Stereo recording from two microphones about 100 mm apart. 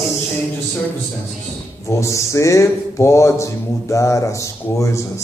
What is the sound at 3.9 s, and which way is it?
Mantra, 30° left (ahead or behind).